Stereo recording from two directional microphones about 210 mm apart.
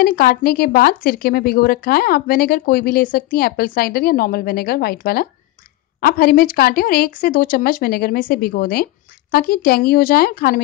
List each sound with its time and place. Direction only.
0.0 s a woman's voice: 45° left (ahead or behind)